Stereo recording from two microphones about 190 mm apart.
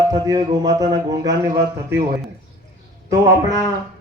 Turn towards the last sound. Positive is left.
turn(degrees=-15)  # may be behind; listen again after turning